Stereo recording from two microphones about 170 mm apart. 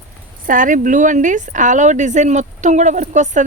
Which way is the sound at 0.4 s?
50° right (ahead or behind).